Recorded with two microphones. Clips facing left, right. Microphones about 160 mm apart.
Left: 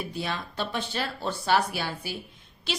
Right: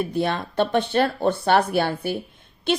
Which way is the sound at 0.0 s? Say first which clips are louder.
Right 9 dB; 55° right (ahead or behind).